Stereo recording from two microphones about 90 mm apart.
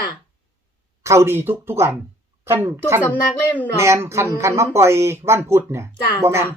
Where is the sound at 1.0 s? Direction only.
30° right (ahead or behind).